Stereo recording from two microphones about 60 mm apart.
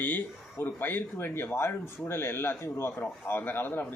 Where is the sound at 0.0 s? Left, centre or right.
Left.